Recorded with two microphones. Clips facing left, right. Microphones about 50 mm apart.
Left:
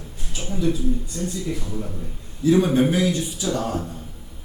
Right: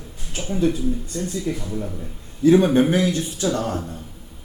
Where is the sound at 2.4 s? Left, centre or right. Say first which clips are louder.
Right 3 dB; right.